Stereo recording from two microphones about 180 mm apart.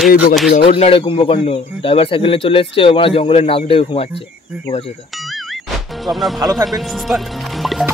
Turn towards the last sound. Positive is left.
turn(degrees=0)  # may be behind; listen again after turning